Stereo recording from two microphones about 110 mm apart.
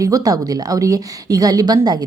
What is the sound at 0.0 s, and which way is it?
A woman's voice, 35° right (ahead or behind).